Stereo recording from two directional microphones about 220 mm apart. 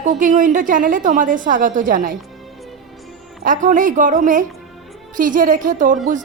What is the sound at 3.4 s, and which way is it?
A woman's voice, 35° right (ahead or behind).